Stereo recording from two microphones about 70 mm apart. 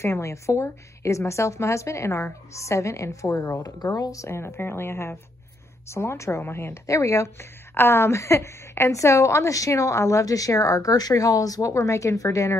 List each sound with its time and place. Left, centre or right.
0.0 s a woman's voice: left
3.8 s speech: left
4.3 s speech: left
7.7 s a woman's voice: left